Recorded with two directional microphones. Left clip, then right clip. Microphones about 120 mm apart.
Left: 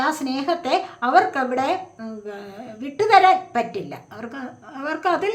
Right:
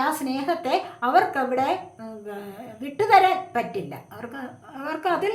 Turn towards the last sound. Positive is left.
turn(degrees=25)  # may be behind; listen again after turning